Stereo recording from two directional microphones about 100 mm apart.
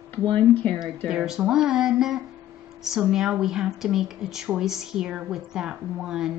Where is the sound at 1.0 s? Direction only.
5° right (ahead or behind).